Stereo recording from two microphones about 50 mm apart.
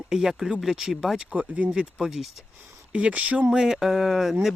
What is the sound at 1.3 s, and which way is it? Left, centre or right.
Speech, right.